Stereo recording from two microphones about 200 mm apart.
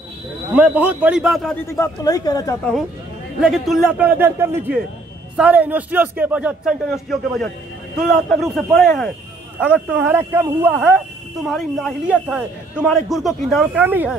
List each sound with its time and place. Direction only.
0.6 s a man's voice: 10° right (ahead or behind)
1.7 s speech: 15° left (ahead or behind)
3.3 s a man's voice: centre (ahead or behind)
11.4 s a man's voice: centre (ahead or behind)